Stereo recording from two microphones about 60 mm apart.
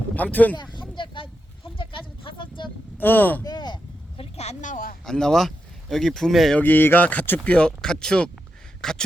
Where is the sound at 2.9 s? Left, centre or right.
Left.